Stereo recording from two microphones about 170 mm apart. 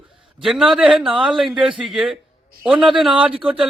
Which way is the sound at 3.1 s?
5° right (ahead or behind).